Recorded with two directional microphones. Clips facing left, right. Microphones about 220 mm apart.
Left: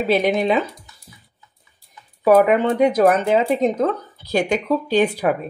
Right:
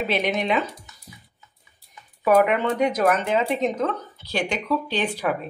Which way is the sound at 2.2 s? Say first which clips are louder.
Left 5 dB; 30° left (ahead or behind).